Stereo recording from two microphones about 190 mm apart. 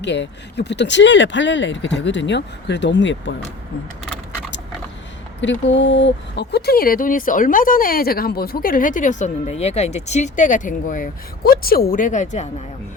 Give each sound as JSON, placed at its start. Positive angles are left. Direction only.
{"t": 0.0, "sound": "speech", "side_deg": 65}
{"t": 5.4, "sound": "speech", "side_deg": 75}